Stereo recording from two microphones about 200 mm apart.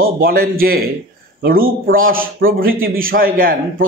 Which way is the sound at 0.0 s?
45° right (ahead or behind).